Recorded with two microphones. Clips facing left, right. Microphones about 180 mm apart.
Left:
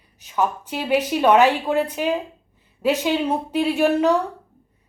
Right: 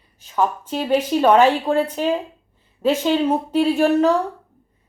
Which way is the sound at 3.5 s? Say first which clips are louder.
Right 2 dB; 40° right (ahead or behind).